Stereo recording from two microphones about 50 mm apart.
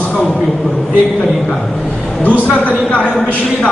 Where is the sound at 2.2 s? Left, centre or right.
Left.